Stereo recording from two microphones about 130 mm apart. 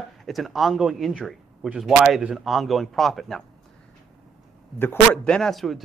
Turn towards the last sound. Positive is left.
turn(degrees=0)  # may be behind; listen again after turning